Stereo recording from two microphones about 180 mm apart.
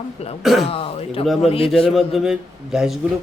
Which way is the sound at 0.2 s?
35° left (ahead or behind).